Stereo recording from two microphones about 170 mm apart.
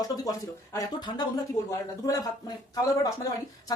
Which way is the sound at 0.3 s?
20° left (ahead or behind).